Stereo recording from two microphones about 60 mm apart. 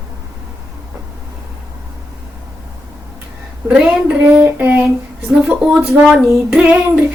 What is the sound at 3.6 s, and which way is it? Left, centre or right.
Speech, centre.